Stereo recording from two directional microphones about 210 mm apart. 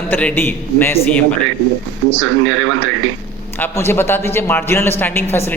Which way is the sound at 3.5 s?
10° left (ahead or behind).